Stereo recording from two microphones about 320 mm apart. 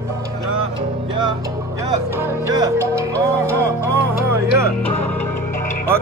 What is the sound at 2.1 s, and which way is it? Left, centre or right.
Music, centre.